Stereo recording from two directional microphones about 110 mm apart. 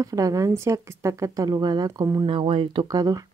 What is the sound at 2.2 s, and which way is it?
A woman's voice, 50° right (ahead or behind).